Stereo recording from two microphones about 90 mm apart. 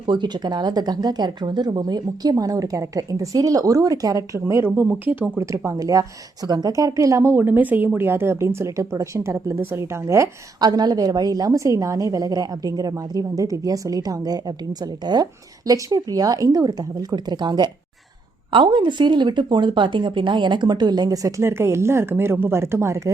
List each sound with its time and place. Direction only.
0.0 s speech: 60° right (ahead or behind); by 4.7 s 30° right (ahead or behind)
5.0 s speech: 15° right (ahead or behind)
5.4 s a woman's voice: 35° right (ahead or behind)
10.6 s speech: 50° right (ahead or behind)
18.5 s speech: 65° right (ahead or behind); by 23.1 s 35° right (ahead or behind)